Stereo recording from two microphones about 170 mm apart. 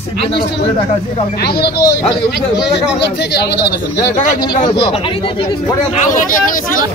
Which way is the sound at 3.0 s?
85° left.